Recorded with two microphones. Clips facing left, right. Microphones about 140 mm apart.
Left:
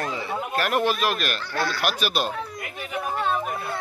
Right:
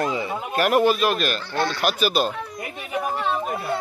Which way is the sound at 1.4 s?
25° right (ahead or behind).